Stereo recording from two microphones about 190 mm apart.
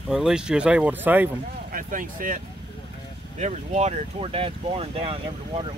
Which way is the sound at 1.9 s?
45° right (ahead or behind).